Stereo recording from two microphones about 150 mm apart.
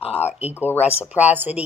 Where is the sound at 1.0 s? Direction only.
10° right (ahead or behind).